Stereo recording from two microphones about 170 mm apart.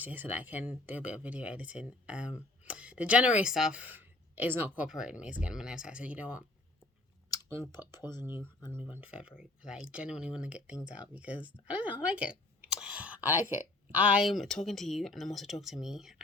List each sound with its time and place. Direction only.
0.0 s speech: 10° right (ahead or behind)
7.8 s speech: 25° left (ahead or behind)
8.7 s speech: 10° right (ahead or behind)